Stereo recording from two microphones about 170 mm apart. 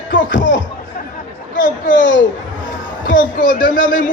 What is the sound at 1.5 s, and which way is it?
A man's voice, 50° left (ahead or behind).